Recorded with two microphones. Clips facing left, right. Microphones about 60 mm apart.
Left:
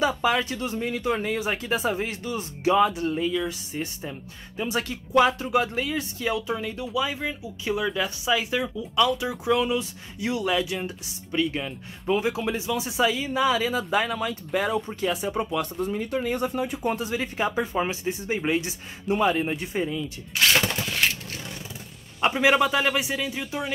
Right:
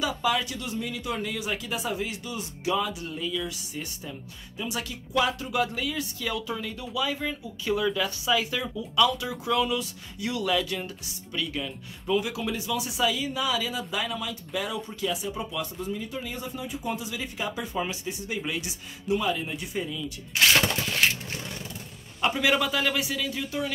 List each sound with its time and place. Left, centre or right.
0.0 s speech: left; by 10.9 s centre
11.3 s speech: left
20.3 s a sound: centre
22.2 s speech: left